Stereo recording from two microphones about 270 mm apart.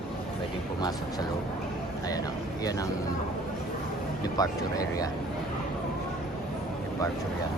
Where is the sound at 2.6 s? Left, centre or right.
Centre.